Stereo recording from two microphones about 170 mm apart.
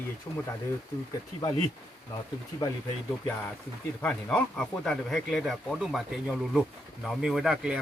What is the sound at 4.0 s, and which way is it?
Speech, 5° left (ahead or behind).